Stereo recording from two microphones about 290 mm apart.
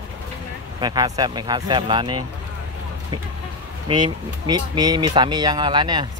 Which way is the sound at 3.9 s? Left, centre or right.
Centre.